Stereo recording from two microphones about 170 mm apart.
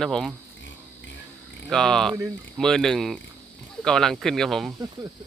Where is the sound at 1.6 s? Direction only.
5° left (ahead or behind).